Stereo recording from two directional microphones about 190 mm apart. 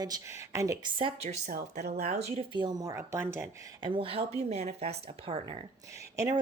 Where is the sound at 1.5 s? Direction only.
50° right (ahead or behind).